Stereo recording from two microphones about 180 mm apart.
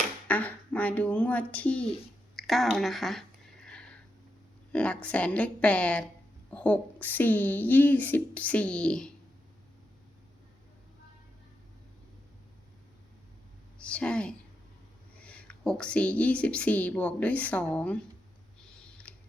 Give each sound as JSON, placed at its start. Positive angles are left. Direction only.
{"t": 0.3, "sound": "speech", "side_deg": 10}
{"t": 4.7, "sound": "a woman's voice", "side_deg": 5}
{"t": 13.8, "sound": "a woman's voice", "side_deg": 5}
{"t": 19.1, "sound": "a sound", "side_deg": 5}